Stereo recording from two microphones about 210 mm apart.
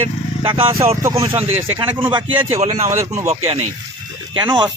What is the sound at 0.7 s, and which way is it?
Speech, 15° right (ahead or behind).